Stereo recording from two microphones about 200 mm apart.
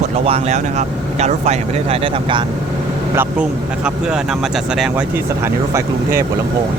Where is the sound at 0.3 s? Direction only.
35° right (ahead or behind).